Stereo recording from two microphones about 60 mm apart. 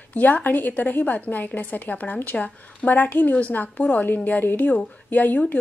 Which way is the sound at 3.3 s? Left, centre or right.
Left.